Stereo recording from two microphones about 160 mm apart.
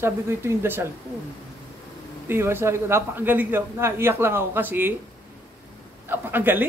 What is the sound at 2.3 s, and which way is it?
A woman's voice, 15° right (ahead or behind).